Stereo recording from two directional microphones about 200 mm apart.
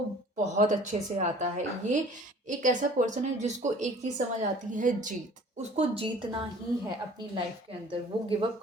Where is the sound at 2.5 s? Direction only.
40° right (ahead or behind).